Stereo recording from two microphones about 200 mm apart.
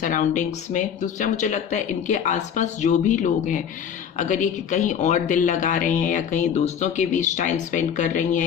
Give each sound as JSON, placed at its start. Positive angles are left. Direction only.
{"t": 0.0, "sound": "speech", "side_deg": 40}